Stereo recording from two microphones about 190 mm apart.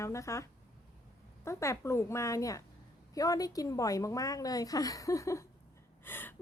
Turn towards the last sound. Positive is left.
turn(degrees=10)  # may be behind; listen again after turning